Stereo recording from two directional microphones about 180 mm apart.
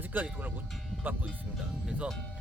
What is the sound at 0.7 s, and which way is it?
Music, 10° right (ahead or behind).